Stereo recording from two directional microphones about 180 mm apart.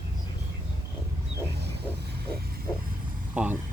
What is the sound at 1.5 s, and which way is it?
Wild animals, 70° right (ahead or behind).